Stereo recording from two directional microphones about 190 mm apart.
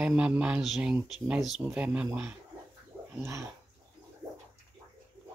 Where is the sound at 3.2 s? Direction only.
15° right (ahead or behind).